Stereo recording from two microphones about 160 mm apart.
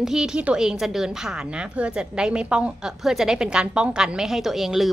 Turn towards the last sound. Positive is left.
turn(degrees=0)  # may be behind; listen again after turning